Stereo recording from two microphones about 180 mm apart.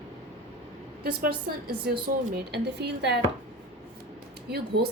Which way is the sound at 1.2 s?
55° right (ahead or behind).